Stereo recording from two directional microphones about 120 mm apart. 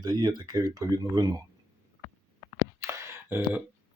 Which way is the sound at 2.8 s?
20° right (ahead or behind).